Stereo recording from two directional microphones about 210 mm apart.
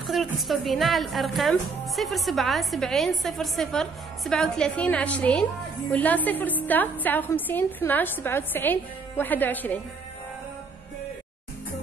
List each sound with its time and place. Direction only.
0.0 s a woman's voice: centre (ahead or behind)